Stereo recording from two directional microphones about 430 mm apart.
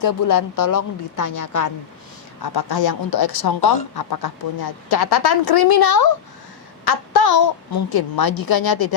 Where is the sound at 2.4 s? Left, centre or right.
Left.